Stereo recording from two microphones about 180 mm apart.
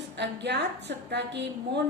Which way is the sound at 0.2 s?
70° right (ahead or behind).